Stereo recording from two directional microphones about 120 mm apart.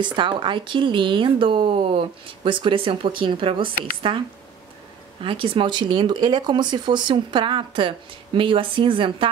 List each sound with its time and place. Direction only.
0.0 s speech: 40° right (ahead or behind)
5.2 s speech: 45° right (ahead or behind)